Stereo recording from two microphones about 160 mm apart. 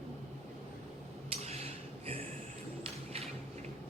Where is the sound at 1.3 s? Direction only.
40° right (ahead or behind).